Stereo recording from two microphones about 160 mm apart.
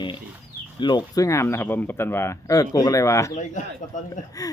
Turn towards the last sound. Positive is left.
turn(degrees=50)  # may be behind; listen again after turning